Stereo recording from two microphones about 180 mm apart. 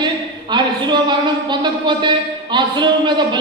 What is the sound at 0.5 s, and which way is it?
A man's voice, 25° right (ahead or behind).